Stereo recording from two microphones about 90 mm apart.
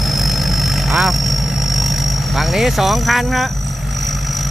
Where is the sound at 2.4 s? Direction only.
Centre (ahead or behind).